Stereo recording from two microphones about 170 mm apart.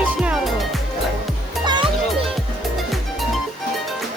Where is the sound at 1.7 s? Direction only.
25° right (ahead or behind).